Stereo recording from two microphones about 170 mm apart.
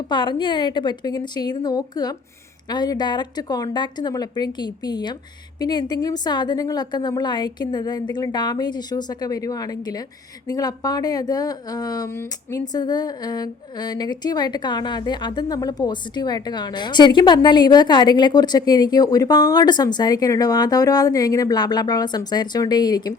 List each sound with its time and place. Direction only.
0.1 s speech: 25° left (ahead or behind)